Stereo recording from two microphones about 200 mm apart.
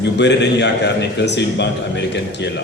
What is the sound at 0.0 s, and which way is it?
A man's voice, 60° left (ahead or behind).